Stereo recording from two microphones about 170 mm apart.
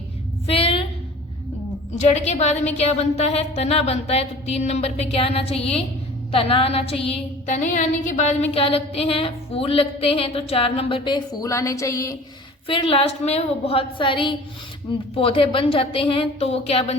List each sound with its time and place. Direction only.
0.4 s a sound: 35° left (ahead or behind)
2.0 s a woman's voice: 40° left (ahead or behind); by 12.1 s 20° left (ahead or behind)
12.6 s a woman's voice: 30° left (ahead or behind)